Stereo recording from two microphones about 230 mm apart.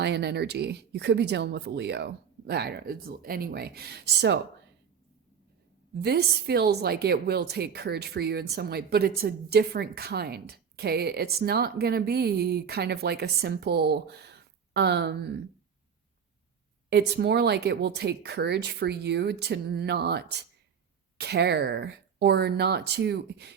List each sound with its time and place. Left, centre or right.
0.0 s a woman's voice: right
5.9 s a woman's voice: right
16.9 s a woman's voice: right